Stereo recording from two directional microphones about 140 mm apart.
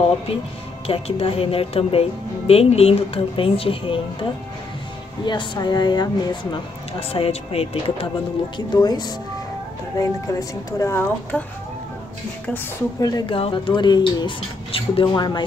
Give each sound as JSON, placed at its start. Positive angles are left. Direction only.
{"t": 0.8, "sound": "speech", "side_deg": 45}
{"t": 6.9, "sound": "speech", "side_deg": 45}
{"t": 8.5, "sound": "a woman's voice", "side_deg": 30}
{"t": 13.0, "sound": "a woman's voice", "side_deg": 25}
{"t": 13.4, "sound": "speech", "side_deg": 40}